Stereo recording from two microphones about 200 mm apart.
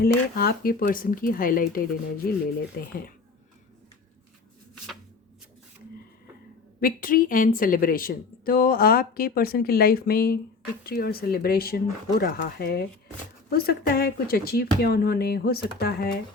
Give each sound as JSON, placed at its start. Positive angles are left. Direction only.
{"t": 0.0, "sound": "speech", "side_deg": 50}
{"t": 6.7, "sound": "speech", "side_deg": 45}